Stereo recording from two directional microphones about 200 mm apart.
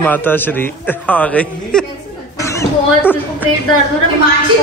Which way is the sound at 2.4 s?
15° left (ahead or behind).